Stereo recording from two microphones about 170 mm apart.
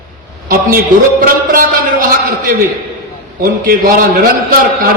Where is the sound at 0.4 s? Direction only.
55° right (ahead or behind).